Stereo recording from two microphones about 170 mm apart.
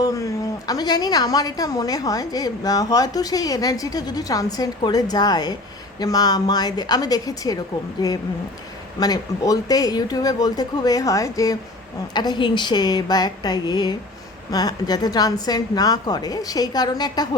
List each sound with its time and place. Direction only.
0.0 s a woman's voice: 20° left (ahead or behind)